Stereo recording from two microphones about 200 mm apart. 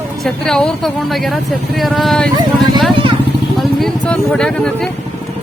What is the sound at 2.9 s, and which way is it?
Vehicle, 25° right (ahead or behind).